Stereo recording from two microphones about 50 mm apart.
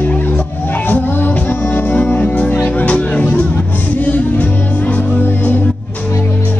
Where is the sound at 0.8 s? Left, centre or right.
Left.